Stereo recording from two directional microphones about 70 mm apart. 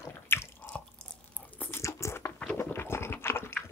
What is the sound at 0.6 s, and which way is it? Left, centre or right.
Drip, centre.